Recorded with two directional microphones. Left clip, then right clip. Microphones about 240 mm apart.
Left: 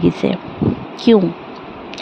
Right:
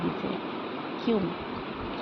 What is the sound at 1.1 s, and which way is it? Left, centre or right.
Speech, left.